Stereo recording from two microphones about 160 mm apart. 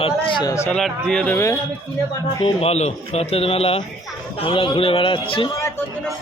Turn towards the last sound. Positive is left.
turn(degrees=35)  # may be behind; listen again after turning